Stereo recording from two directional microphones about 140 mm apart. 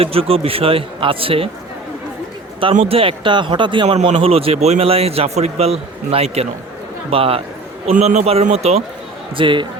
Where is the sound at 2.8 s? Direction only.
40° right (ahead or behind).